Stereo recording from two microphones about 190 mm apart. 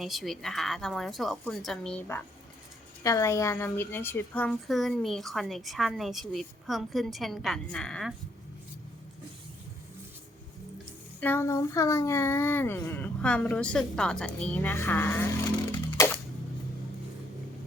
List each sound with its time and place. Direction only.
0.0 s a woman's voice: centre (ahead or behind)
11.2 s speech: 10° left (ahead or behind)